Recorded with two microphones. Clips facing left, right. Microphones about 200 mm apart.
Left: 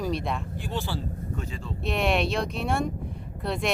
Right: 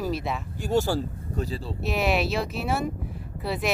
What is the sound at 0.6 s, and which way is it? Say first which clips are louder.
Speech: right 8 dB; 45° right (ahead or behind).